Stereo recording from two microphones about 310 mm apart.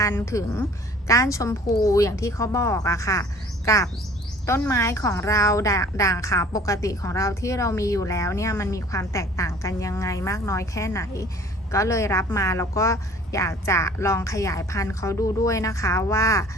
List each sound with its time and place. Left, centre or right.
0.0 s a woman's voice: centre
4.4 s a woman's voice: centre